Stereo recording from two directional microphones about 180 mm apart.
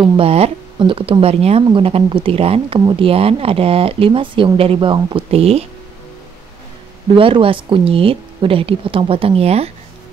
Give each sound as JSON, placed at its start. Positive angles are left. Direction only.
{"t": 0.0, "sound": "speech", "side_deg": -30}
{"t": 7.2, "sound": "speech", "side_deg": -30}